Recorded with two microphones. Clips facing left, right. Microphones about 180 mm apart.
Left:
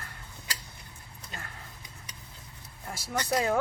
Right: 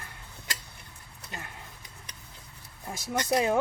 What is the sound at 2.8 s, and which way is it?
Speech, 15° right (ahead or behind).